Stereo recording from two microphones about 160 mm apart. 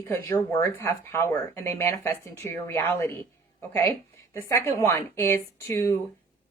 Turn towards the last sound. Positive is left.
turn(degrees=15)  # may be behind; listen again after turning